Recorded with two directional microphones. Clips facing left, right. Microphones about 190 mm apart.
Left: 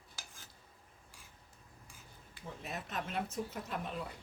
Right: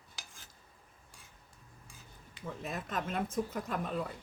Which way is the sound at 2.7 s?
50° right (ahead or behind).